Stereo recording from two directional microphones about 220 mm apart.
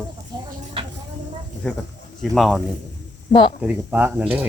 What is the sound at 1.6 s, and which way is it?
A woman's voice, 5° left (ahead or behind).